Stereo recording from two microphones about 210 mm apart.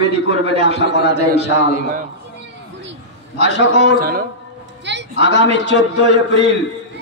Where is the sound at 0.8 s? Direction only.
55° left (ahead or behind).